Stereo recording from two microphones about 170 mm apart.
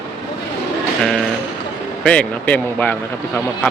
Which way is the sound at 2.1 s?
10° left (ahead or behind).